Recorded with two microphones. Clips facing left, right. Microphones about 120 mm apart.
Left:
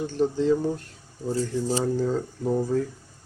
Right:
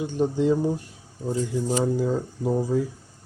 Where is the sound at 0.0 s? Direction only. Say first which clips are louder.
Right 1 dB; 10° right (ahead or behind).